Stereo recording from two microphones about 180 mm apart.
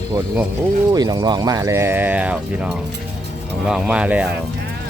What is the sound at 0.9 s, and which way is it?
Speech, 20° right (ahead or behind).